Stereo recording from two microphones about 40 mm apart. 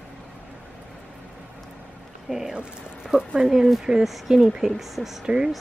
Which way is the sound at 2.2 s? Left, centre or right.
Centre.